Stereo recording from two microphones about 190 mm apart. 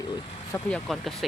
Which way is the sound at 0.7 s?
Centre (ahead or behind).